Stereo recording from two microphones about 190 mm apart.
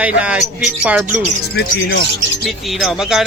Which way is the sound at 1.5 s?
60° left (ahead or behind).